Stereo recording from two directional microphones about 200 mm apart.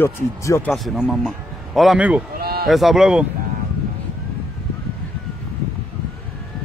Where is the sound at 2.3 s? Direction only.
50° right (ahead or behind).